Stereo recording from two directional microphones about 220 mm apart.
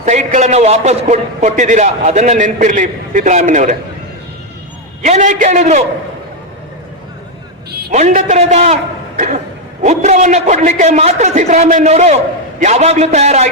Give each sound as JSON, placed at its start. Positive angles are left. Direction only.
{"t": 0.0, "sound": "a man's voice", "side_deg": -30}
{"t": 5.0, "sound": "a man's voice", "side_deg": -30}
{"t": 7.9, "sound": "a man's voice", "side_deg": -30}